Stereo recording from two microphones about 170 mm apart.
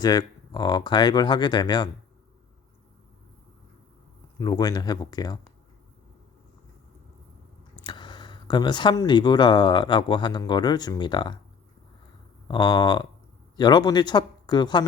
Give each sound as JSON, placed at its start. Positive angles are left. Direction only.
{"t": 0.0, "sound": "speech", "side_deg": 25}
{"t": 4.4, "sound": "speech", "side_deg": 20}
{"t": 7.9, "sound": "speech", "side_deg": 25}
{"t": 12.5, "sound": "speech", "side_deg": 25}